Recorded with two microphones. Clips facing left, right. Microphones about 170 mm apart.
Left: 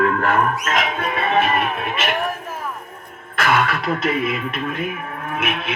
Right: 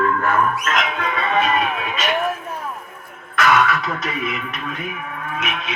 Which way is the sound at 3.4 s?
55° left (ahead or behind).